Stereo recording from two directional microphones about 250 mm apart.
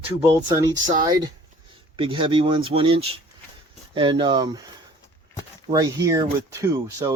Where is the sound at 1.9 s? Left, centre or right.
Centre.